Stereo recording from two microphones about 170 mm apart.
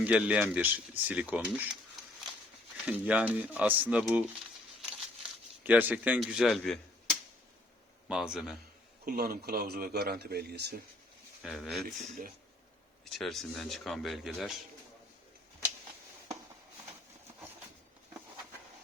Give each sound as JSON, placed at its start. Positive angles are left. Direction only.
{"t": 0.0, "sound": "speech", "side_deg": -5}
{"t": 2.8, "sound": "speech", "side_deg": -10}
{"t": 4.8, "sound": "crumpling", "side_deg": -5}
{"t": 8.0, "sound": "speech", "side_deg": -5}
{"t": 9.0, "sound": "speech", "side_deg": -60}
{"t": 11.4, "sound": "speech", "side_deg": 0}